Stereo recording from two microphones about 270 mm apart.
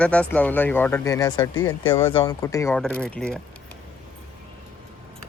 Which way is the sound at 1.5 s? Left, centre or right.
Left.